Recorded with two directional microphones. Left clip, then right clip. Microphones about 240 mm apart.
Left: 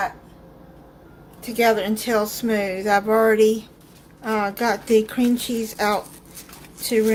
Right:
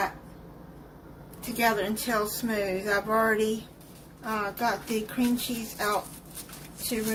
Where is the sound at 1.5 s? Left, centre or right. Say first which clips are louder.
Left 7 dB; left.